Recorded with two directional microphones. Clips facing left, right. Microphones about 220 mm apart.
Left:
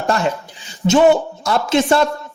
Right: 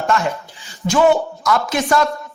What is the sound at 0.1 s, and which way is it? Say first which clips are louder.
Speech: right 2 dB; 35° left (ahead or behind).